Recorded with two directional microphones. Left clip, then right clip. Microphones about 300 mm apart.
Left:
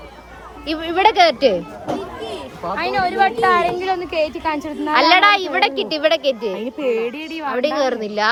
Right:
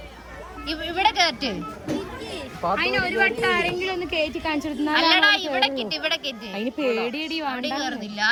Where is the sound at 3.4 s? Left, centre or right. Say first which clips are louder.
Left 7 dB; centre.